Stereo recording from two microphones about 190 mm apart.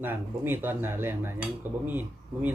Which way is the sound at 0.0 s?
10° right (ahead or behind).